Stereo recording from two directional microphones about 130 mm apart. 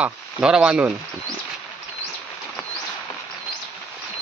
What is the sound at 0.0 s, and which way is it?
Speech, 5° right (ahead or behind).